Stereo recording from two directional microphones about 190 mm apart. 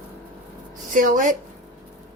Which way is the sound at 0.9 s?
45° right (ahead or behind).